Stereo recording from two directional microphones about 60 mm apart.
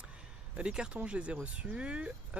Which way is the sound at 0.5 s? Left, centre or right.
Centre.